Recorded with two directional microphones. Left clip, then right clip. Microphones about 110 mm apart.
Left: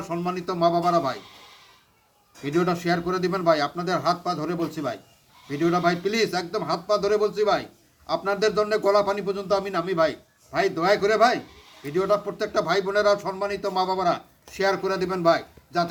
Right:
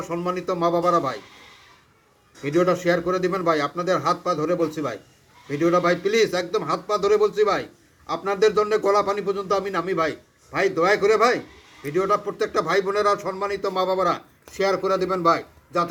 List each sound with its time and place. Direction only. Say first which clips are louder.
0.0 s speech: right 2 dB; 25° left (ahead or behind)
2.4 s speech: right 4 dB; 30° left (ahead or behind)